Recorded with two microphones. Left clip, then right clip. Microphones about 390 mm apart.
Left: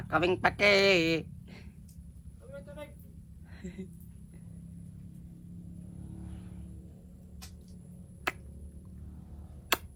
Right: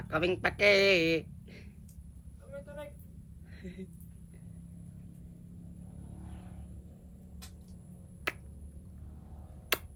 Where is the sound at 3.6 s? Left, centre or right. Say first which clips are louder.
Left 1 dB; centre.